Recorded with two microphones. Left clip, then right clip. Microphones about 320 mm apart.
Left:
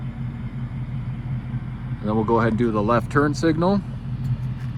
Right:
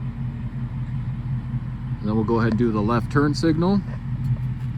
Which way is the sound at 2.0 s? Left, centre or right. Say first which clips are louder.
Left 2 dB; left.